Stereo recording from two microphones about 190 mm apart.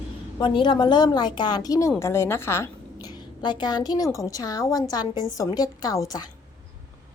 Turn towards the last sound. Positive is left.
turn(degrees=20)  # may be behind; listen again after turning